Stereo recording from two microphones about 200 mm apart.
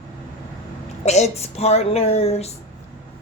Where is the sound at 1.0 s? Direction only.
35° left (ahead or behind).